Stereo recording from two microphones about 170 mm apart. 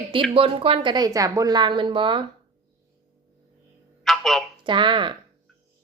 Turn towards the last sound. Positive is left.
turn(degrees=-30)  # may be behind; listen again after turning